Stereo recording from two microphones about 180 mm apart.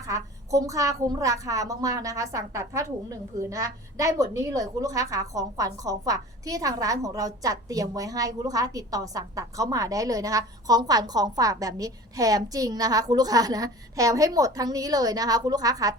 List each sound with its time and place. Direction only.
0.1 s a woman's voice: 20° right (ahead or behind)